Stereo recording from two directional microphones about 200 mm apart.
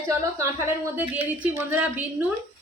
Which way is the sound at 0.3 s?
10° right (ahead or behind).